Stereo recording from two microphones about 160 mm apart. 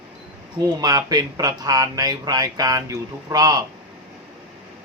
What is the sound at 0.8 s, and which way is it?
Speech, 25° right (ahead or behind).